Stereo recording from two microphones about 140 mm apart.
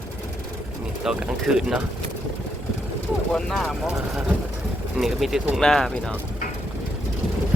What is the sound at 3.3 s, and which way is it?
Speech, 5° left (ahead or behind).